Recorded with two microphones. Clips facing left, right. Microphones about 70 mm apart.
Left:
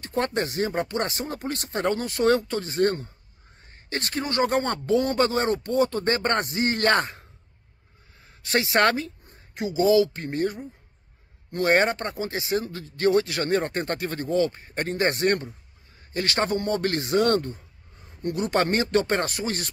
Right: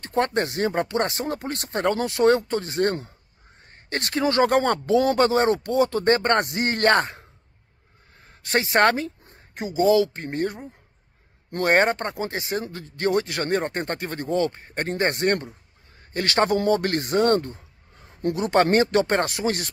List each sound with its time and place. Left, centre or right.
0.0 s speech: right
3.7 s a sound: right
4.5 s speech: right
4.8 s speech: right
5.1 s speech: right
8.2 s a sound: right
9.6 s speech: right
16.4 s speech: right
16.7 s speech: right